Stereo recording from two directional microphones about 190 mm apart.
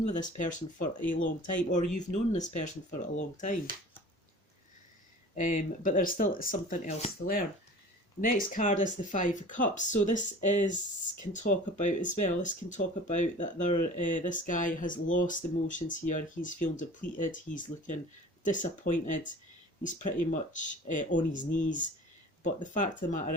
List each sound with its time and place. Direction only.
0.1 s speech: 40° left (ahead or behind)
5.3 s speech: 40° left (ahead or behind)